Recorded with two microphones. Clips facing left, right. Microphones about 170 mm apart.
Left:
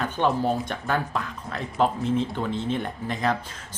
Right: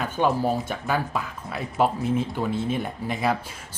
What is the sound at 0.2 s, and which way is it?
Speech, 5° right (ahead or behind).